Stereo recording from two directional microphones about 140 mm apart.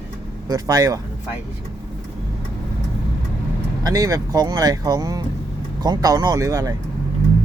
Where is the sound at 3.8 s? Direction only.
25° right (ahead or behind).